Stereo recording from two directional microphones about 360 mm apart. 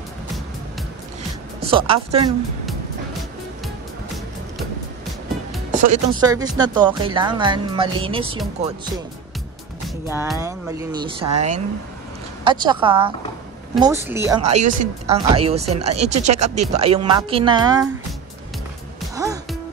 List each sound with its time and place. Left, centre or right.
1.6 s speech: centre
5.7 s speech: right
10.0 s speech: centre
14.6 s speech: right
19.1 s music: centre